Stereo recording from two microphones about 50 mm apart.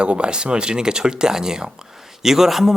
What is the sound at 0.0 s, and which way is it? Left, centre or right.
Speech, centre.